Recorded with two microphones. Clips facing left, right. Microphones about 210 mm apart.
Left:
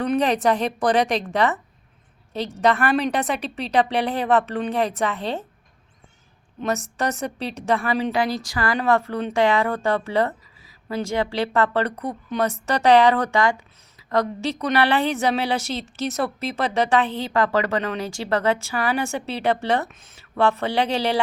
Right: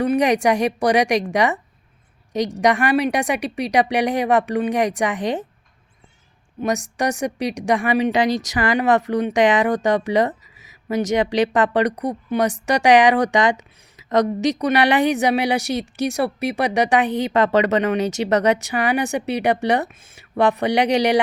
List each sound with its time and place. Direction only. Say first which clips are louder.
0.0 s a woman's voice: right 3 dB; 10° right (ahead or behind)
6.6 s a woman's voice: right 3 dB; 15° right (ahead or behind)